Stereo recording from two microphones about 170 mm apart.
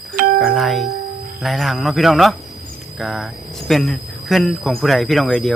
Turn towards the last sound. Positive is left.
turn(degrees=5)  # may be behind; listen again after turning